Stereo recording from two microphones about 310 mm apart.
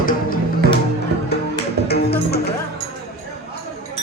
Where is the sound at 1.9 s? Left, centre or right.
Left.